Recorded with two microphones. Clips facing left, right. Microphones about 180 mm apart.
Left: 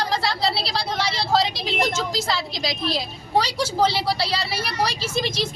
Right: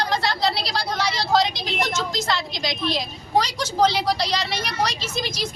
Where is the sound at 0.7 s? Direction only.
Centre (ahead or behind).